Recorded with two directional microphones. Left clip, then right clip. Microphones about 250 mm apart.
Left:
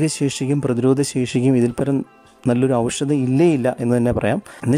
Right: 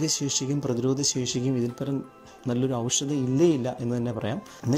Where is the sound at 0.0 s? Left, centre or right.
Left.